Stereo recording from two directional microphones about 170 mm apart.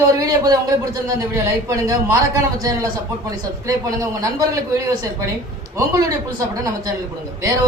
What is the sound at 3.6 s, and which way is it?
Speech, 20° right (ahead or behind).